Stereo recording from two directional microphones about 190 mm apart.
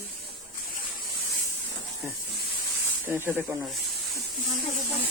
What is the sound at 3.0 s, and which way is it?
Speech, 10° right (ahead or behind).